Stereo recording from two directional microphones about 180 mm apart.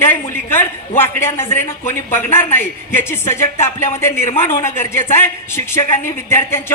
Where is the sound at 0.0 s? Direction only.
10° left (ahead or behind).